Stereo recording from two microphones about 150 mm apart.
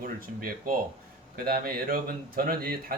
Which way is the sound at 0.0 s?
70° right (ahead or behind).